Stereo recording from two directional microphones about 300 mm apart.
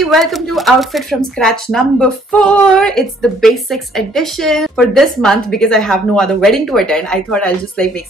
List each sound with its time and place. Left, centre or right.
0.0 s speech: centre